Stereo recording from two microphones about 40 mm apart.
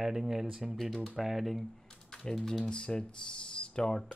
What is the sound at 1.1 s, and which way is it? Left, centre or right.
Speech, centre.